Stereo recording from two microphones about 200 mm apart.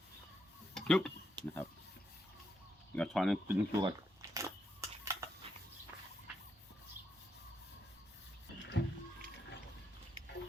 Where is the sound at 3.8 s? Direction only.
20° right (ahead or behind).